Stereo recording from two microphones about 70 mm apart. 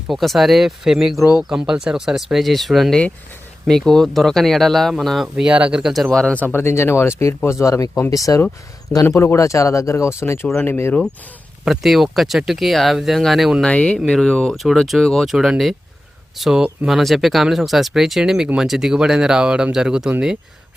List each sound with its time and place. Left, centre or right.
0.1 s speech: centre
5.5 s speech: centre
6.1 s speech: centre
6.5 s speech: left
7.6 s speech: left
9.0 s speech: left
11.6 s speech: centre
13.7 s speech: centre